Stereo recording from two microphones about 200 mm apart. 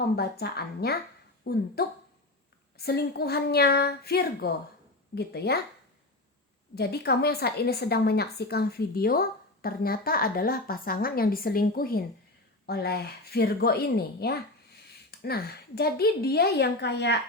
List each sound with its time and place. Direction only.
0.2 s a woman's voice: 50° left (ahead or behind)
6.7 s a woman's voice: 55° left (ahead or behind)